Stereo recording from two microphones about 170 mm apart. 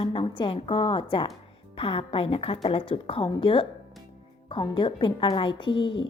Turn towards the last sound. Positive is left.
turn(degrees=30)  # may be behind; listen again after turning